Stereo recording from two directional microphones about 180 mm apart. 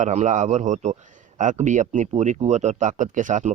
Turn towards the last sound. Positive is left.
turn(degrees=-45)  # may be behind; listen again after turning